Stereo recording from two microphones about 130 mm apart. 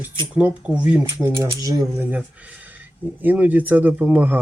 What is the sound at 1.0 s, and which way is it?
Speech, 20° right (ahead or behind).